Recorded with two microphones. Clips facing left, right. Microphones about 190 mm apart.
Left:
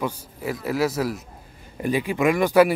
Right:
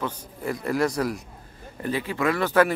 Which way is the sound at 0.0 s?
5° left (ahead or behind).